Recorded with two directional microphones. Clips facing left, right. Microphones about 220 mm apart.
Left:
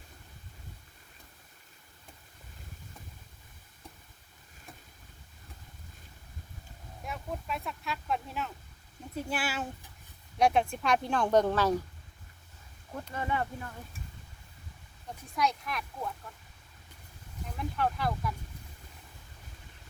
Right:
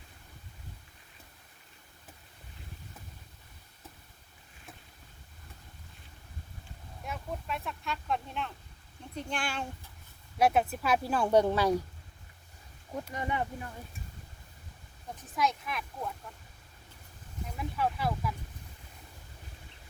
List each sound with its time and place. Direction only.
7.0 s speech: centre (ahead or behind)
10.3 s speech: 5° right (ahead or behind)
12.9 s speech: 15° right (ahead or behind)
15.3 s speech: centre (ahead or behind)
17.6 s speech: 5° right (ahead or behind)